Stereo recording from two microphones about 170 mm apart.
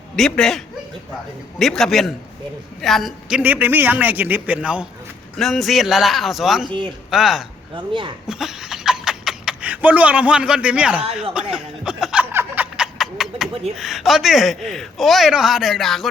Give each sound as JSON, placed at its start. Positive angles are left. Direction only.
{"t": 0.2, "sound": "a man's voice", "side_deg": 5}
{"t": 6.7, "sound": "a man's voice", "side_deg": -30}
{"t": 7.1, "sound": "a man's voice", "side_deg": 0}
{"t": 11.5, "sound": "a sound", "side_deg": -5}
{"t": 13.7, "sound": "a man's voice", "side_deg": 0}